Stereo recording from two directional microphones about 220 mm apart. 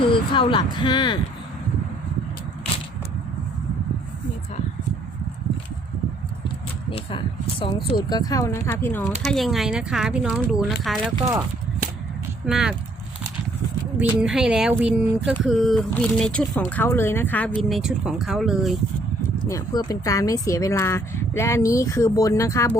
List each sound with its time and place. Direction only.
0.1 s speech: 20° left (ahead or behind)
6.9 s speech: 25° left (ahead or behind); by 10.8 s centre (ahead or behind)
12.5 s speech: centre (ahead or behind)
14.0 s speech: 5° right (ahead or behind)
19.5 s speech: 15° left (ahead or behind)